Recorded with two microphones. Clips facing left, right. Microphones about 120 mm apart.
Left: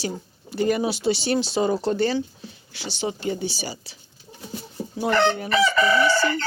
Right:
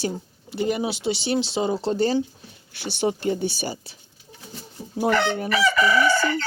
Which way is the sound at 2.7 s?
55° right (ahead or behind).